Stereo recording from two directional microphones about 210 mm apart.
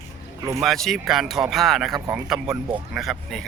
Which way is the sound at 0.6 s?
Centre (ahead or behind).